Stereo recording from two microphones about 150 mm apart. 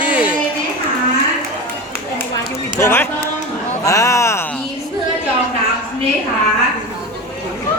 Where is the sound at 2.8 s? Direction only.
15° left (ahead or behind).